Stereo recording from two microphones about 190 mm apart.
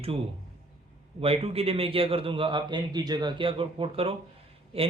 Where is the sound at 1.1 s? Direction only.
30° right (ahead or behind).